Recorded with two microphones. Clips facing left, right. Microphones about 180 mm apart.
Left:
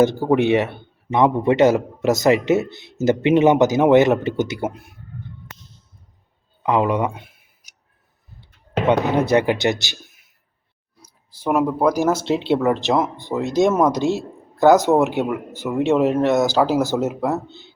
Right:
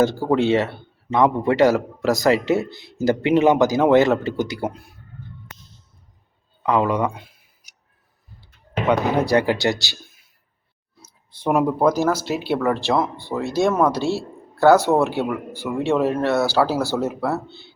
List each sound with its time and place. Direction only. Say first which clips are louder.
0.0 s a man's voice: left 2 dB; 20° left (ahead or behind)
6.6 s a man's voice: left 1 dB; 20° left (ahead or behind)
8.9 s a man's voice: left 1 dB; 20° left (ahead or behind)
11.0 s speech: right 1 dB; 5° left (ahead or behind)
11.9 s a man's voice: left 2 dB; 25° left (ahead or behind)